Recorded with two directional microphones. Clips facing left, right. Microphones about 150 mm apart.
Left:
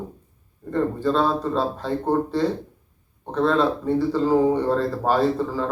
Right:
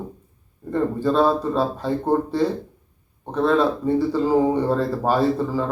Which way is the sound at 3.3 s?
10° right (ahead or behind).